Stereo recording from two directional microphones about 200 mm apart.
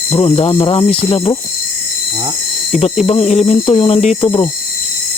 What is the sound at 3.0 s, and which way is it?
Speech, 30° left (ahead or behind).